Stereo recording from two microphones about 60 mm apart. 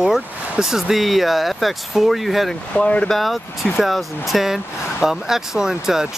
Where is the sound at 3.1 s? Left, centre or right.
Centre.